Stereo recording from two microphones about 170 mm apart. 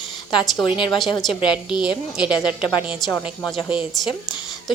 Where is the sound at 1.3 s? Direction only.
30° left (ahead or behind).